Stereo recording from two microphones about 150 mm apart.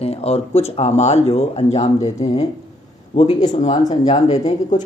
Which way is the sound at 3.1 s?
45° left (ahead or behind).